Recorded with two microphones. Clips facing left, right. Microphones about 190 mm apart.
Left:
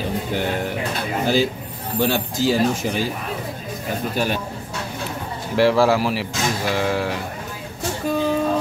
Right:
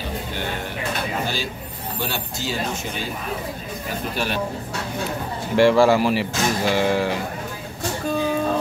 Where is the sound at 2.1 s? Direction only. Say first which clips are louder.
Left 8 dB; 90° left.